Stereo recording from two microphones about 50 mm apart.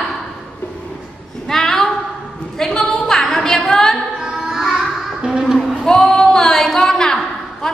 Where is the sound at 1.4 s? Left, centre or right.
Centre.